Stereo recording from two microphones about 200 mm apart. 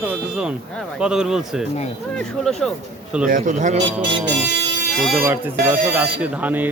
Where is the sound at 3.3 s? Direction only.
40° right (ahead or behind).